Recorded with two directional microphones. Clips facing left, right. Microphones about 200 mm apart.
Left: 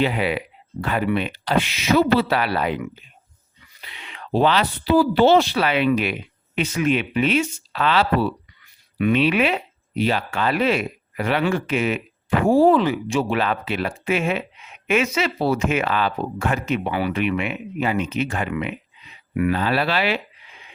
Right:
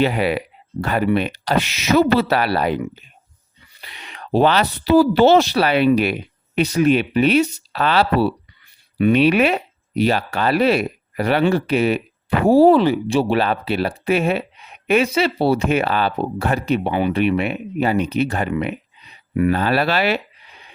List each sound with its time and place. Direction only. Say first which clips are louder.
0.0 s speech: right 3 dB; 45° right (ahead or behind)
3.8 s a sound: right 3 dB; 40° right (ahead or behind)
4.9 s speech: right 3 dB; 40° right (ahead or behind)
19.5 s speech: right 3 dB; 45° right (ahead or behind)